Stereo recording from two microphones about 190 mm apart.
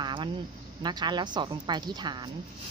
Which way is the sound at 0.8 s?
25° right (ahead or behind).